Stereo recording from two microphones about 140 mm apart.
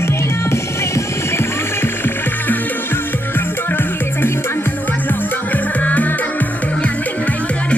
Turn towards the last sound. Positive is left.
turn(degrees=10)  # may be behind; listen again after turning